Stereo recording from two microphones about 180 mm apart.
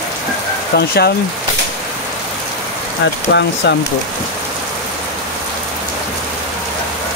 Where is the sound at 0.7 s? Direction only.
65° left (ahead or behind).